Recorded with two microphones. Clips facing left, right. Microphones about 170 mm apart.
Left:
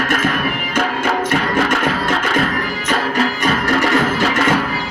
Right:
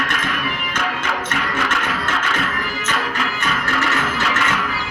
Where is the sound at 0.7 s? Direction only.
35° left (ahead or behind).